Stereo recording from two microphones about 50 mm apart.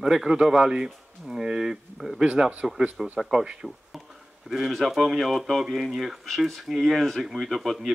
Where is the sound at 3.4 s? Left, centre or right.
Centre.